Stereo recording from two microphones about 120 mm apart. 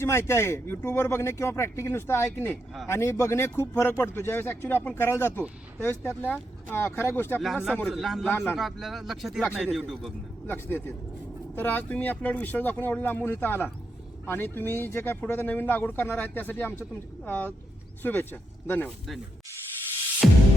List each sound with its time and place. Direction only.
0.0 s speech: 20° left (ahead or behind)
7.4 s speech: 5° right (ahead or behind)
10.4 s speech: 15° left (ahead or behind)
20.2 s music: centre (ahead or behind)